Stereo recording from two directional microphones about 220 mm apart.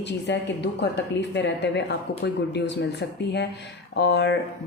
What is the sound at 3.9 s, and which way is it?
Speech, 50° left (ahead or behind).